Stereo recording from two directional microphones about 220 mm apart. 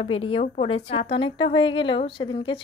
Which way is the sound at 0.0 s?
25° left (ahead or behind).